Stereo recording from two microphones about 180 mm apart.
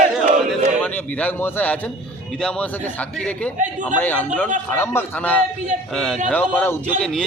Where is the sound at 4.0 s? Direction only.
10° left (ahead or behind).